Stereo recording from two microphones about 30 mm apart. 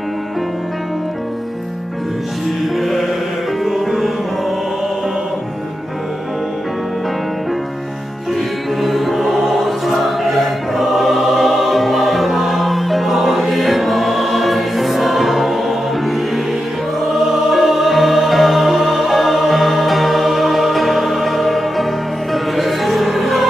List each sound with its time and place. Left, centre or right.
2.7 s music: centre
8.8 s music: centre